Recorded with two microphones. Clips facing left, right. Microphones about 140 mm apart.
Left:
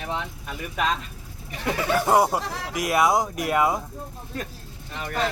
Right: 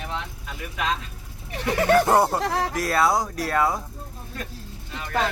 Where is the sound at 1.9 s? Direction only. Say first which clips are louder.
Even; 10° left (ahead or behind).